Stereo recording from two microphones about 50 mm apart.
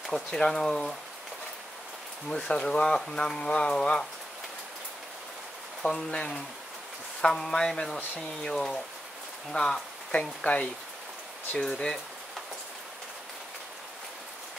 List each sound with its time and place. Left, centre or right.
0.3 s speech: centre
2.2 s speech: centre
5.8 s speech: centre
10.4 s speech: left
11.5 s speech: centre